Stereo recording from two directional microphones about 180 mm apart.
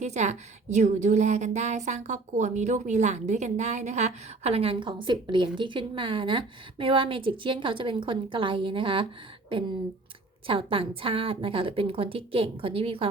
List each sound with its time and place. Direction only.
0.0 s a woman's voice: 40° right (ahead or behind)